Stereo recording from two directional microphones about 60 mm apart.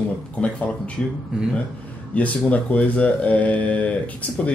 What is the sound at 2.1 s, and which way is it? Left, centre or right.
Speech, left.